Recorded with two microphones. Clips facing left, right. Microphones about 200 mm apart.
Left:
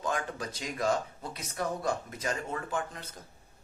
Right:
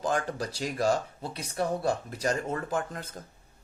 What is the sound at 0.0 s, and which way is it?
Speech, 35° right (ahead or behind).